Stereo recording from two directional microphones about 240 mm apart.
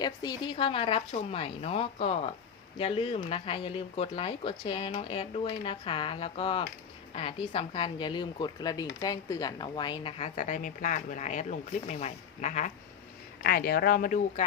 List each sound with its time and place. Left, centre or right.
0.0 s speech: centre; by 14.4 s left